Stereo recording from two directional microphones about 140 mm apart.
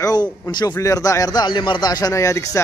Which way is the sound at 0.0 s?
30° left (ahead or behind).